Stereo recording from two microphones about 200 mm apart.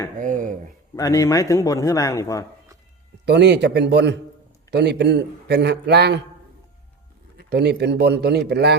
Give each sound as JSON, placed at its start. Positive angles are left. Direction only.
{"t": 0.2, "sound": "speech", "side_deg": -40}
{"t": 0.9, "sound": "a man's voice", "side_deg": 15}
{"t": 3.2, "sound": "a man's voice", "side_deg": -60}
{"t": 7.3, "sound": "a man's voice", "side_deg": -55}